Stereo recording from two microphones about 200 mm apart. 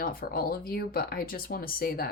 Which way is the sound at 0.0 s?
45° left (ahead or behind).